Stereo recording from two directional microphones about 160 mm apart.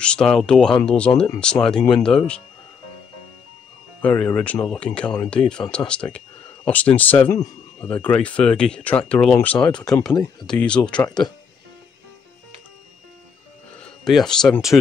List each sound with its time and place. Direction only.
0.0 s speech: 5° left (ahead or behind)
1.1 s speech: 35° left (ahead or behind)
1.4 s speech: 5° left (ahead or behind)
4.0 s speech: 10° left (ahead or behind)
14.0 s speech: centre (ahead or behind)